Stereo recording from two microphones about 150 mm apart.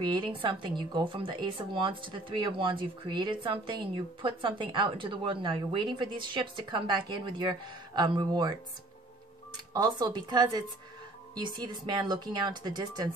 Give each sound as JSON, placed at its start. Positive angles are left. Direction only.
{"t": 0.0, "sound": "speech", "side_deg": -30}
{"t": 9.8, "sound": "speech", "side_deg": -30}